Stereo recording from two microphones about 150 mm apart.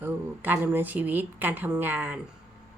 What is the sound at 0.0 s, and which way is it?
Speech, 10° right (ahead or behind).